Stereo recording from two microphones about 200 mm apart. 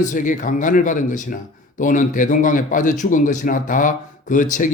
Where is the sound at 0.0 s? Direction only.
40° left (ahead or behind).